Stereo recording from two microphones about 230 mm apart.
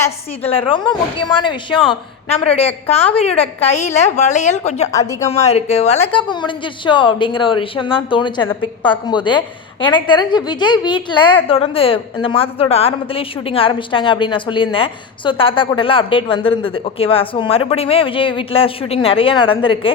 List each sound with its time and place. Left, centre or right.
0.7 s a woman's voice: left
4.9 s speech: centre
5.3 s a woman's voice: left